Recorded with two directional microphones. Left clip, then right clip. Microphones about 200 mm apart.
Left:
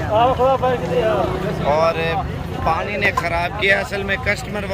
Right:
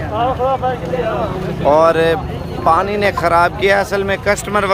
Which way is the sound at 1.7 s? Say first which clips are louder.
Right 7 dB; 35° right (ahead or behind).